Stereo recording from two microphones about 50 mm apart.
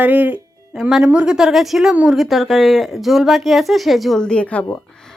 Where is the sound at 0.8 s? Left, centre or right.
Centre.